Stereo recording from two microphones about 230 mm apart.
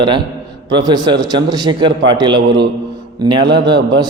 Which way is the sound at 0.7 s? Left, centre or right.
Centre.